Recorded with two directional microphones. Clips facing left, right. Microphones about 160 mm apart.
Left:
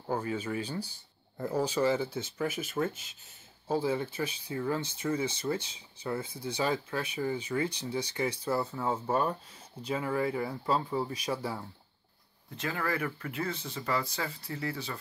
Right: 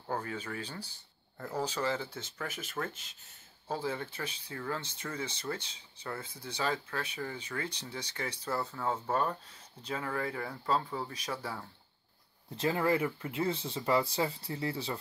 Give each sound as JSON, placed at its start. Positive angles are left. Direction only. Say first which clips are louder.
{"t": 0.1, "sound": "speech", "louder": "left 5 dB", "side_deg": 10}
{"t": 12.5, "sound": "speech", "louder": "right 4 dB", "side_deg": -25}